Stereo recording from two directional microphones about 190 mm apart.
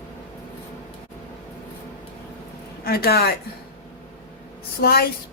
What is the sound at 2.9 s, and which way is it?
Speech, 55° left (ahead or behind).